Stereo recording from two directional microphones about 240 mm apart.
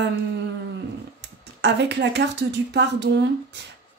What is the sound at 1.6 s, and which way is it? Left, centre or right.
Speech, right.